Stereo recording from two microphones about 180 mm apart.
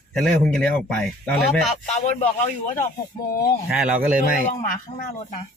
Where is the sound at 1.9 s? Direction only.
40° left (ahead or behind).